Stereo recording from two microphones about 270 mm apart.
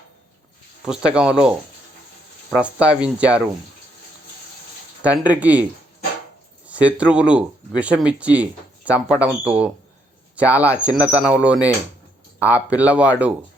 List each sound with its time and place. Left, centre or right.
0.9 s speech: centre
5.0 s speech: centre
6.7 s speech: centre